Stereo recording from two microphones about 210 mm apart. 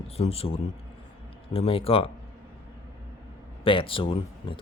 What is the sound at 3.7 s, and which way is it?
Speech, 25° left (ahead or behind).